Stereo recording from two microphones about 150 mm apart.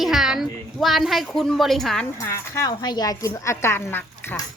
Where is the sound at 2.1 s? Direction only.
20° left (ahead or behind).